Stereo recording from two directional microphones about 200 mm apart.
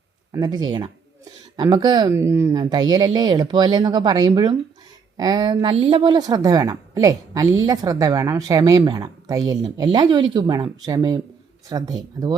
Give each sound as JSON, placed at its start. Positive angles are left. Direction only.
{"t": 0.3, "sound": "a woman's voice", "side_deg": -20}